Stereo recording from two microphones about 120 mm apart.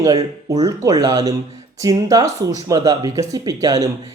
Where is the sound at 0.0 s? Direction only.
30° right (ahead or behind).